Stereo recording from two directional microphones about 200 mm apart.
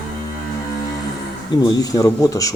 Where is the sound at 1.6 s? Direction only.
20° left (ahead or behind).